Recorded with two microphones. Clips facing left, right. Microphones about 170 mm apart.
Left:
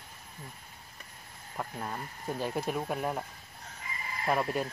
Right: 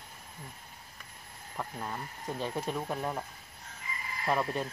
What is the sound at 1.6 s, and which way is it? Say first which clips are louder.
Speech: left 1 dB; 5° left (ahead or behind).